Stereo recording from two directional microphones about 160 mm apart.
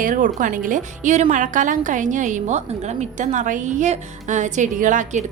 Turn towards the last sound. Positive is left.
turn(degrees=-50)  # may be behind; listen again after turning